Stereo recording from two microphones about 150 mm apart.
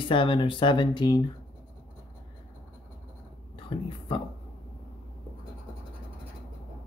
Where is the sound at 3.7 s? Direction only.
35° left (ahead or behind).